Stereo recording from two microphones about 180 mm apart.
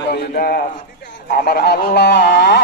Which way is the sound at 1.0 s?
55° left (ahead or behind).